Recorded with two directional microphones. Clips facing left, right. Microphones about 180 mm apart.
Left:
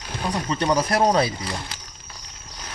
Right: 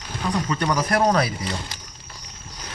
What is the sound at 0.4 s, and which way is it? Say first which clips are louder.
Speech: left 5 dB; 25° left (ahead or behind).